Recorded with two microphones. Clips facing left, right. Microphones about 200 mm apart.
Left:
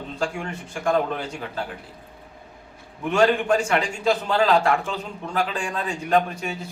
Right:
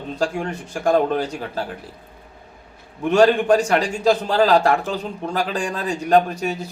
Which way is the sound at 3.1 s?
35° right (ahead or behind).